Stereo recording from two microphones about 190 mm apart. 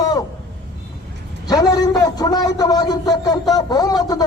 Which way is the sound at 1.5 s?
20° left (ahead or behind).